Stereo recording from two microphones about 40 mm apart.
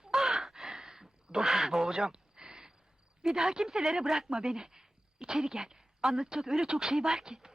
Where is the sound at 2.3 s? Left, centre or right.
Centre.